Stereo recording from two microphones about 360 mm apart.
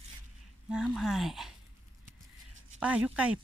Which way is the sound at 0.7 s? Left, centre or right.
Centre.